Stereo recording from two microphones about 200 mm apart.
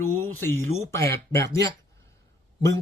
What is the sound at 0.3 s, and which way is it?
Speech, 10° left (ahead or behind).